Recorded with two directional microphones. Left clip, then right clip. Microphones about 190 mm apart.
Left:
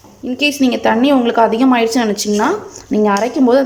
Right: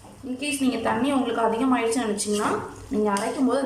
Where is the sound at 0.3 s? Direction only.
50° left (ahead or behind).